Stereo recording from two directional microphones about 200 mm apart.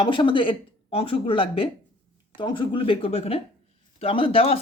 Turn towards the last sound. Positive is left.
turn(degrees=30)  # may be behind; listen again after turning